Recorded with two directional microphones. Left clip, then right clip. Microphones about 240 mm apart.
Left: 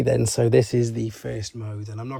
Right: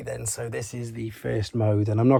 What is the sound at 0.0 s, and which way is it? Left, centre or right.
Speech, left.